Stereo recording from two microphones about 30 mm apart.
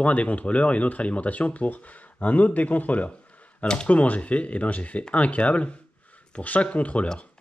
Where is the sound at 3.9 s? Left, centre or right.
Left.